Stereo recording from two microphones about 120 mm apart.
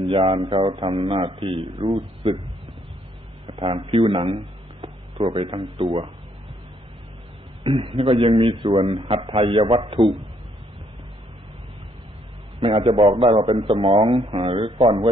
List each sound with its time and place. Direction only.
0.0 s a man's voice: 45° right (ahead or behind)
3.4 s speech: 45° right (ahead or behind)
7.6 s a man's voice: 50° right (ahead or behind)
12.5 s a man's voice: 50° right (ahead or behind)